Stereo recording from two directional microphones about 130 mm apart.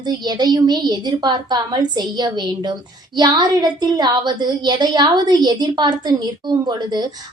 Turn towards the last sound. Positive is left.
turn(degrees=-30)  # may be behind; listen again after turning